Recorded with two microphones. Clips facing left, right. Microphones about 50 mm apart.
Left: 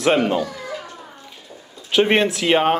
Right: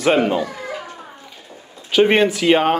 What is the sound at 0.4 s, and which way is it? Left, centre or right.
Speech, right.